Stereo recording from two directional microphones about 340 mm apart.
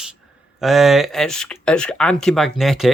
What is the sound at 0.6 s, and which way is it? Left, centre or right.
Speech, centre.